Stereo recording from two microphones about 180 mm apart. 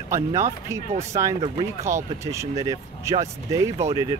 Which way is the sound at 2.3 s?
20° right (ahead or behind).